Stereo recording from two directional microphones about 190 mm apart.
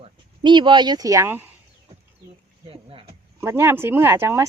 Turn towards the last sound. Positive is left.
turn(degrees=-15)  # may be behind; listen again after turning